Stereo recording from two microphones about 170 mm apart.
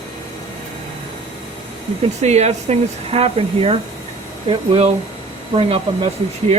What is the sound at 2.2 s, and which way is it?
Speech, 40° right (ahead or behind).